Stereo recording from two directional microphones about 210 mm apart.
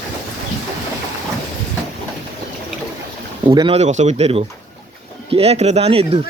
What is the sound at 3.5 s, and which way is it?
Speech, 25° right (ahead or behind).